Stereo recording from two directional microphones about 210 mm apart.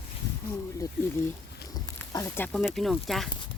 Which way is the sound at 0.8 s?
15° left (ahead or behind).